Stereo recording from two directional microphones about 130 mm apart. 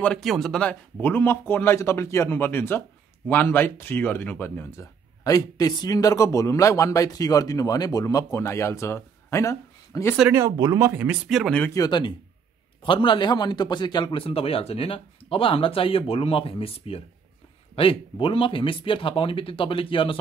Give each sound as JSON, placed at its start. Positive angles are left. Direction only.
{"t": 0.0, "sound": "speech", "side_deg": 5}
{"t": 10.3, "sound": "speech", "side_deg": -25}
{"t": 10.9, "sound": "speech", "side_deg": -10}
{"t": 11.7, "sound": "a man's voice", "side_deg": 30}